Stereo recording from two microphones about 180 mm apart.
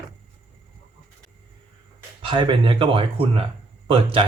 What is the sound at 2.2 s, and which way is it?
Speech, 25° right (ahead or behind).